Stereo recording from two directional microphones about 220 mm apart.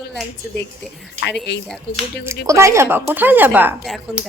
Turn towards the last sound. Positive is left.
turn(degrees=-5)  # may be behind; listen again after turning